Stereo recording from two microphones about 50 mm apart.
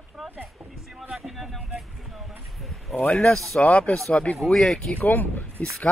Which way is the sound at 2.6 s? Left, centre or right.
Centre.